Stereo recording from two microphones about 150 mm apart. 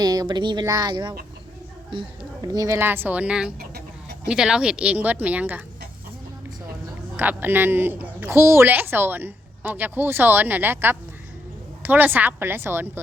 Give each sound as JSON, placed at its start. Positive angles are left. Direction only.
{"t": 0.0, "sound": "a woman's voice", "side_deg": -25}
{"t": 7.2, "sound": "speech", "side_deg": -15}